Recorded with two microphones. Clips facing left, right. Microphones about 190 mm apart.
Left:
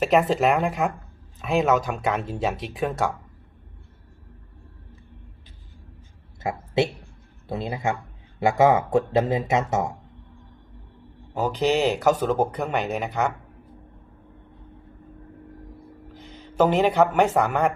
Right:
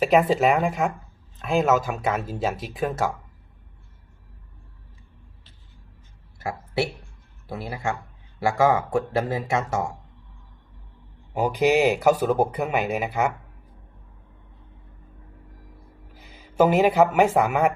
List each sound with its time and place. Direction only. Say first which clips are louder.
0.0 s speech: right 1 dB; centre (ahead or behind)
6.4 s speech: left 3 dB; 20° left (ahead or behind)
11.3 s speech: right 2 dB; 10° right (ahead or behind)
16.1 s speech: right 1 dB; 10° right (ahead or behind)